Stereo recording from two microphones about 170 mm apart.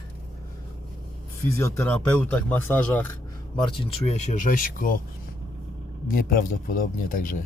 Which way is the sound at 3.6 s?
30° left (ahead or behind).